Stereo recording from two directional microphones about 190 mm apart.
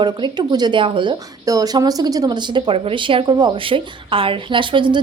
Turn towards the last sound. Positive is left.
turn(degrees=-25)  # may be behind; listen again after turning